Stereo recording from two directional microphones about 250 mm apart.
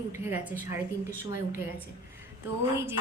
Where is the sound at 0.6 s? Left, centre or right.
Left.